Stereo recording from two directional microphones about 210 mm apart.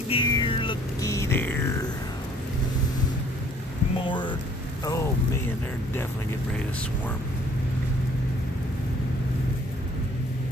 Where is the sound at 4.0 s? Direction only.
25° left (ahead or behind).